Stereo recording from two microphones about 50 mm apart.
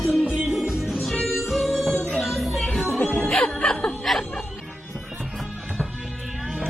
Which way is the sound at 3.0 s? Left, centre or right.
Left.